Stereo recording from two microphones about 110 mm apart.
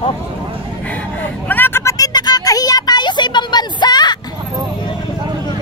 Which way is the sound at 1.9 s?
35° left (ahead or behind).